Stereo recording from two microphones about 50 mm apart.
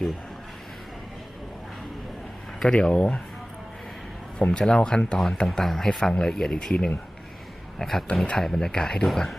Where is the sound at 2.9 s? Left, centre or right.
Left.